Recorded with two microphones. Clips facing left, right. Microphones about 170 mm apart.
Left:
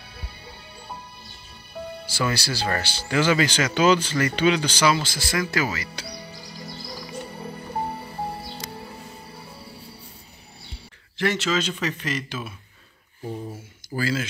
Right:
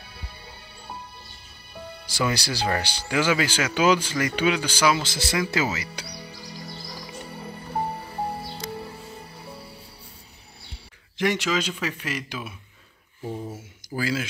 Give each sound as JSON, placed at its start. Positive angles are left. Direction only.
{"t": 2.0, "sound": "speech", "side_deg": -15}
{"t": 5.0, "sound": "speech", "side_deg": -25}
{"t": 11.1, "sound": "speech", "side_deg": -15}